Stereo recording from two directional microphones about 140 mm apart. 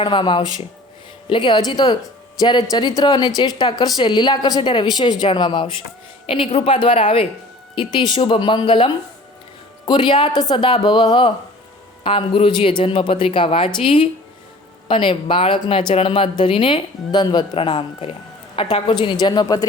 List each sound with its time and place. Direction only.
0.0 s speech: 35° left (ahead or behind)